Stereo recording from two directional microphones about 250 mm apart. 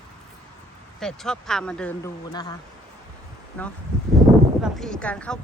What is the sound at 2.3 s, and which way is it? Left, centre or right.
Speech, centre.